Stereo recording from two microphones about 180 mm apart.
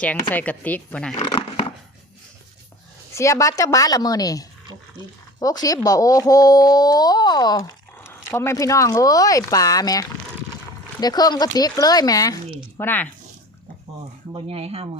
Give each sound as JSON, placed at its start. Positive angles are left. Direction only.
{"t": 0.0, "sound": "speech", "side_deg": 10}
{"t": 1.1, "sound": "a sound", "side_deg": 30}
{"t": 3.2, "sound": "speech", "side_deg": 15}
{"t": 14.3, "sound": "speech", "side_deg": -30}